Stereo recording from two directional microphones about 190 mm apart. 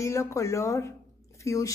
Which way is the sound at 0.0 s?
15° left (ahead or behind).